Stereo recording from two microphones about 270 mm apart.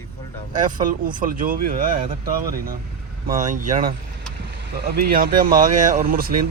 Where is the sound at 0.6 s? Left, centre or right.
Right.